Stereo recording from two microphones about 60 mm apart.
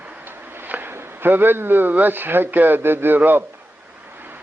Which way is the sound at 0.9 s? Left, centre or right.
Right.